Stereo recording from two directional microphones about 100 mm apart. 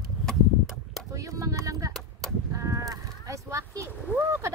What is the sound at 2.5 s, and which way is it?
Livestock, 35° right (ahead or behind).